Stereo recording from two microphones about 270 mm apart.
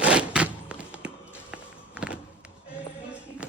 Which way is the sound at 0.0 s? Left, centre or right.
Centre.